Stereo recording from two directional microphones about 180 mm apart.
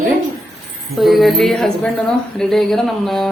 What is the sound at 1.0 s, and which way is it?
Speech, centre (ahead or behind).